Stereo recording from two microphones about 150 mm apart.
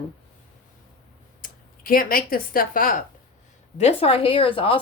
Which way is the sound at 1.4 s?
70° left (ahead or behind).